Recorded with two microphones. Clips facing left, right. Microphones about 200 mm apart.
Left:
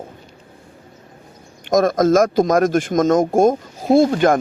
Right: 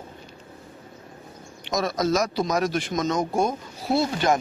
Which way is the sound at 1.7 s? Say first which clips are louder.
Left 9 dB; 50° left (ahead or behind).